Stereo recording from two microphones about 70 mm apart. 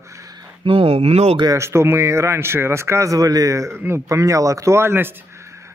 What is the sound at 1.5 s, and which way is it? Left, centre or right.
Speech, right.